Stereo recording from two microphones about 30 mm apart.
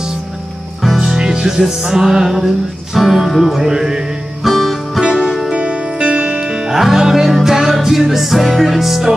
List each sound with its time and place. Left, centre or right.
0.9 s music: centre
3.6 s music: centre
4.4 s music: centre
5.2 s music: centre
5.5 s music: right
6.7 s music: centre